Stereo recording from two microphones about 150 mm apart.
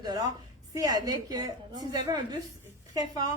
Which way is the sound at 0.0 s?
25° right (ahead or behind).